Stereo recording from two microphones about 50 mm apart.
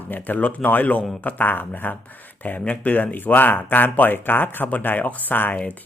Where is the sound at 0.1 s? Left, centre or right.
Left.